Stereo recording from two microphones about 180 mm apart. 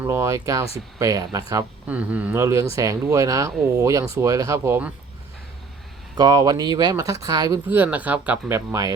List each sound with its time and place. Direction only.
0.0 s speech: 15° right (ahead or behind)
1.9 s speech: 10° right (ahead or behind)
6.1 s speech: 20° right (ahead or behind)